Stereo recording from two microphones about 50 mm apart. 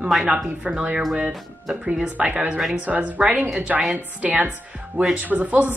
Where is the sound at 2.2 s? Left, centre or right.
Right.